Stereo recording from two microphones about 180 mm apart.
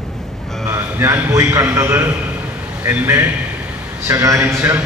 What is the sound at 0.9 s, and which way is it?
A man's voice, 15° right (ahead or behind).